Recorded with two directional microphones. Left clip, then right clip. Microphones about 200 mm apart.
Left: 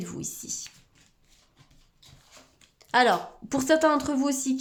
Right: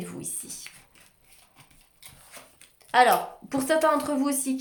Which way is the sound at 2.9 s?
35° left (ahead or behind).